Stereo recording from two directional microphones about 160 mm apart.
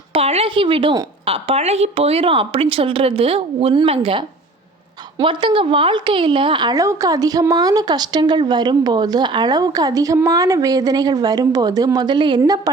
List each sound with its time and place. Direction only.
0.1 s a woman's voice: 40° right (ahead or behind); by 12.7 s 20° right (ahead or behind)